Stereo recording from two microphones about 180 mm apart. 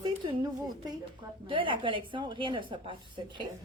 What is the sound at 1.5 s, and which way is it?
A woman's voice, 30° right (ahead or behind).